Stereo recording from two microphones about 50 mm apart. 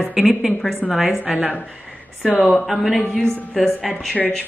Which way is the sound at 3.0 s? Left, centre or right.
Centre.